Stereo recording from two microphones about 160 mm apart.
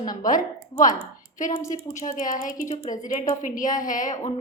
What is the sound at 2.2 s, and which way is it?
Speech, 20° left (ahead or behind).